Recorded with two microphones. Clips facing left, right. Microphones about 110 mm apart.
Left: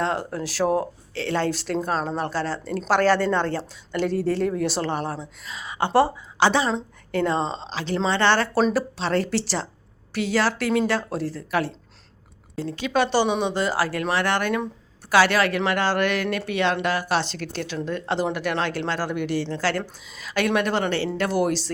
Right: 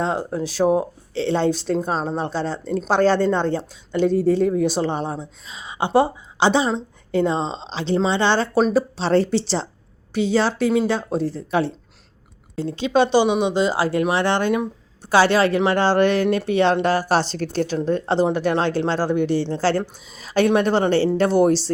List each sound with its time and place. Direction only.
0.0 s a woman's voice: 20° right (ahead or behind)
8.7 s speech: 30° right (ahead or behind)